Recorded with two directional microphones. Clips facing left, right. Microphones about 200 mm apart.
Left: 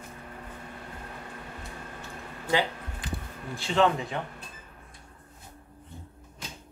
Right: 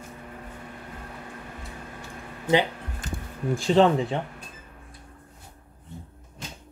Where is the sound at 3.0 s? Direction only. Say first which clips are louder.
Even; 45° right (ahead or behind).